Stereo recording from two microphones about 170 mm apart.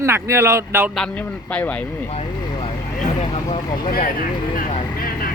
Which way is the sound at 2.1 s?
35° left (ahead or behind).